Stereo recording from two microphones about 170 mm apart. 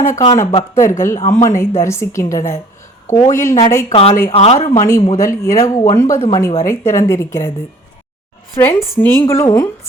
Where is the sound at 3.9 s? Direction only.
35° left (ahead or behind).